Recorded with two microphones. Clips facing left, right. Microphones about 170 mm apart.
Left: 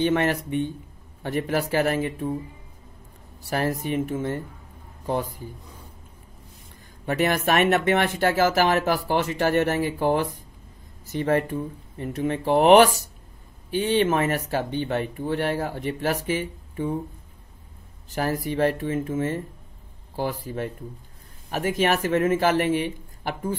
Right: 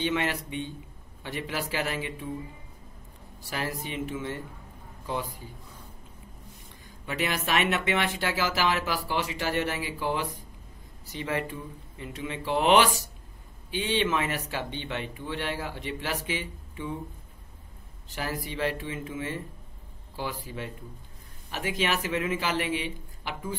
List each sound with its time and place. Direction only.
0.0 s speech: 50° left (ahead or behind)
3.4 s speech: 50° left (ahead or behind)
7.1 s speech: 50° left (ahead or behind)
18.1 s speech: 45° left (ahead or behind)